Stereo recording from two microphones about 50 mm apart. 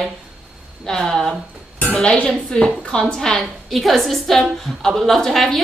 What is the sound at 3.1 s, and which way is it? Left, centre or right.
A woman's voice, centre.